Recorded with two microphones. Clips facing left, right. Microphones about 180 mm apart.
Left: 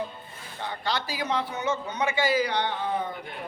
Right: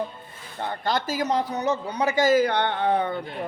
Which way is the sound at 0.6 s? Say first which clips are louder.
Right 4 dB; 50° right (ahead or behind).